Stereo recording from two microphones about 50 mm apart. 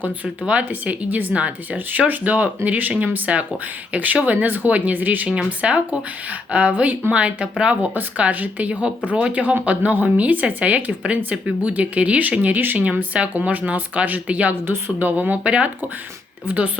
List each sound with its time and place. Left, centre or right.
0.4 s speech: right
5.5 s speech: right